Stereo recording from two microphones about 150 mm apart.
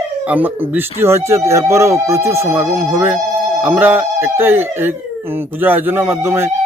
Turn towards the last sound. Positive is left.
turn(degrees=-15)  # may be behind; listen again after turning